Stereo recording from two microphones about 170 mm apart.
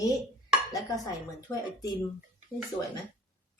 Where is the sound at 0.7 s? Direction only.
25° left (ahead or behind).